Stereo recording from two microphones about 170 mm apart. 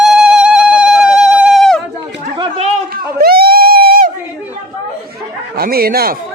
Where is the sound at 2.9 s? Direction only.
60° right (ahead or behind).